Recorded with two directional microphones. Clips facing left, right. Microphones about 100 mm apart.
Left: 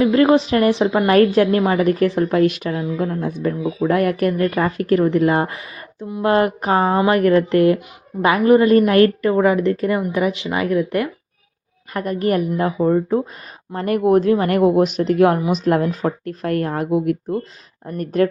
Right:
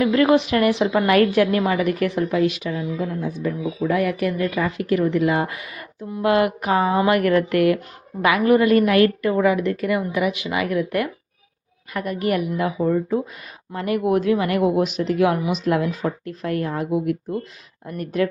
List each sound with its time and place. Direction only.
0.0 s a woman's voice: 30° left (ahead or behind)
2.3 s speech: 50° left (ahead or behind)
3.5 s a woman's voice: 35° left (ahead or behind)
3.8 s speech: 50° left (ahead or behind)
5.5 s speech: 25° left (ahead or behind)
6.2 s a woman's voice: 35° left (ahead or behind)
7.0 s a woman's voice: 25° left (ahead or behind)
11.9 s a woman's voice: 35° left (ahead or behind)